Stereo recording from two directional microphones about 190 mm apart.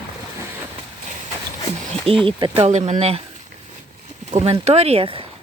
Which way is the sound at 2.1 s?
30° right (ahead or behind).